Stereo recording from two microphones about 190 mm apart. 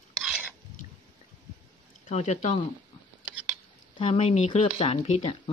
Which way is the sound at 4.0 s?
30° left (ahead or behind).